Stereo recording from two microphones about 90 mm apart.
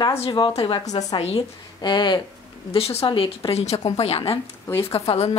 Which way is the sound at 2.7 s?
85° left.